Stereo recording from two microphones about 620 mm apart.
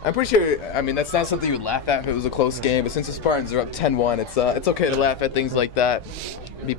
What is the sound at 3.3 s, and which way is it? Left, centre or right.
Speech, left.